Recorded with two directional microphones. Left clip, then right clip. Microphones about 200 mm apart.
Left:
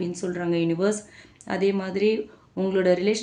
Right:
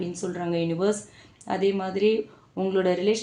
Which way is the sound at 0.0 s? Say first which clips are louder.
Left 2 dB; 15° left (ahead or behind).